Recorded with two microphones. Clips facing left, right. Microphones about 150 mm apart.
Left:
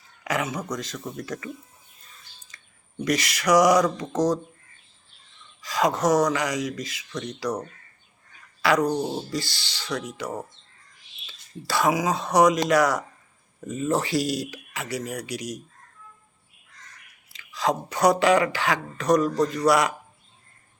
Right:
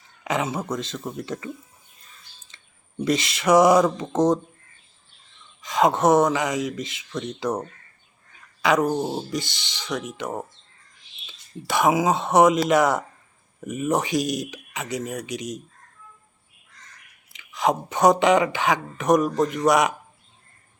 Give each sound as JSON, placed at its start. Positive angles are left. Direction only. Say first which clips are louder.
{"t": 0.3, "sound": "speech", "louder": "right 2 dB", "side_deg": -25}
{"t": 2.5, "sound": "a sound", "louder": "left 1 dB", "side_deg": -25}
{"t": 3.0, "sound": "speech", "louder": "right 2 dB", "side_deg": -25}
{"t": 5.6, "sound": "speech", "louder": "right 3 dB", "side_deg": -25}
{"t": 17.3, "sound": "speech", "louder": "right 2 dB", "side_deg": -20}